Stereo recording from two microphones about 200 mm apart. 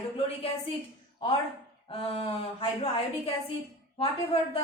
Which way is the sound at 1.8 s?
25° left (ahead or behind).